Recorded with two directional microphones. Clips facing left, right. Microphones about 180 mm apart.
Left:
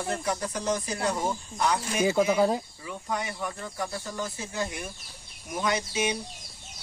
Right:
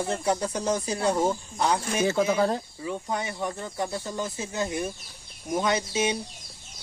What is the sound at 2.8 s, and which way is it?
Speech, 25° right (ahead or behind).